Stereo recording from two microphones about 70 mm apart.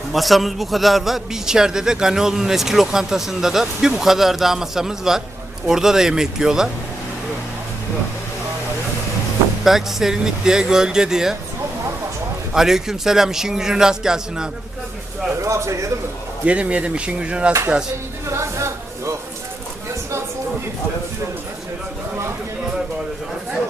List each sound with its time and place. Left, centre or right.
0.1 s a man's voice: centre
9.6 s a man's voice: centre
12.5 s a man's voice: centre
15.4 s speech: right
16.5 s a man's voice: centre
18.3 s a sound: right